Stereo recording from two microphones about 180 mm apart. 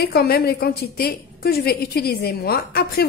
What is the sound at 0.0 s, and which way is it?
A woman's voice, 60° left (ahead or behind).